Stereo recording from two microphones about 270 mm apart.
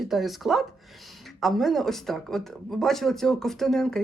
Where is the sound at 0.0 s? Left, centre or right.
Centre.